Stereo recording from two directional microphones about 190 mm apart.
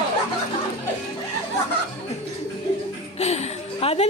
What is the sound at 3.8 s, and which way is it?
Music, 30° left (ahead or behind).